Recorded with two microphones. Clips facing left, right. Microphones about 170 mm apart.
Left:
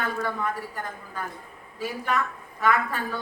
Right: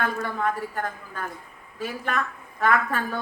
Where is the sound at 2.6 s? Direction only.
50° right (ahead or behind).